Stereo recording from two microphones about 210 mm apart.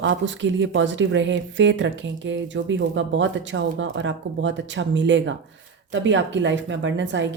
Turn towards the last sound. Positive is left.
turn(degrees=-60)  # may be behind; listen again after turning